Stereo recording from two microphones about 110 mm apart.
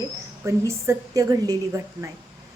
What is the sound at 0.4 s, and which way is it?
A woman's voice, 25° right (ahead or behind).